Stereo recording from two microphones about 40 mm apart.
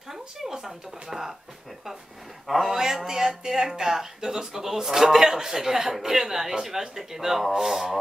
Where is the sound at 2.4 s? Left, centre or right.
Centre.